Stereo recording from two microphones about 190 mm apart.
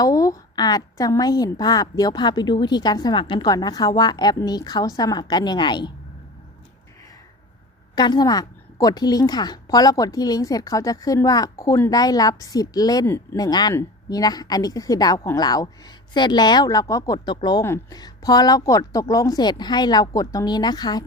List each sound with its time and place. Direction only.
0.0 s a woman's voice: 15° left (ahead or behind)
7.9 s a woman's voice: 20° left (ahead or behind)